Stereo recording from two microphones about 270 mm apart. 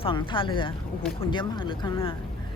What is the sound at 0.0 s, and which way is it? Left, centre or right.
Speech, centre.